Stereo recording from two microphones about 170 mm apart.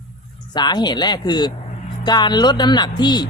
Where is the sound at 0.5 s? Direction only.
25° left (ahead or behind).